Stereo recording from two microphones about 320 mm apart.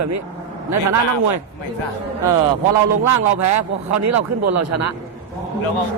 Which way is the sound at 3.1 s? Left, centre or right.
Right.